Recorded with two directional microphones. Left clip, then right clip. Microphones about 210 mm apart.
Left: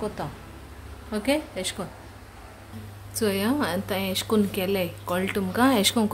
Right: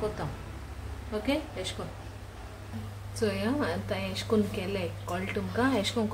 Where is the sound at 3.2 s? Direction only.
55° left (ahead or behind).